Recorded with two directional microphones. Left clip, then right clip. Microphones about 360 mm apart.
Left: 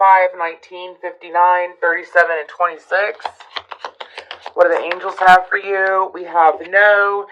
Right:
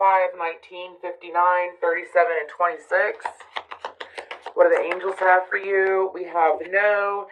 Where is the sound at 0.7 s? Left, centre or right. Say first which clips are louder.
Left 5 dB; centre.